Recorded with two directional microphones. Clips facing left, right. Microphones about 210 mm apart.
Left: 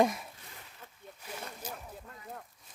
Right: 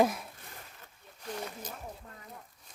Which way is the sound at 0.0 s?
Centre (ahead or behind).